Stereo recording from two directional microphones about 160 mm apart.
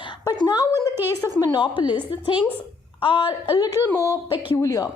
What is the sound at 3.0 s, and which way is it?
A woman's voice, 30° left (ahead or behind).